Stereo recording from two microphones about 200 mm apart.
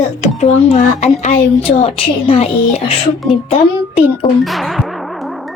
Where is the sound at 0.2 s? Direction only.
35° left (ahead or behind).